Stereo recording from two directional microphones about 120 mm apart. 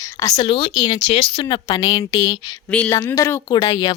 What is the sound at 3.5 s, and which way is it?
Speech, 35° left (ahead or behind).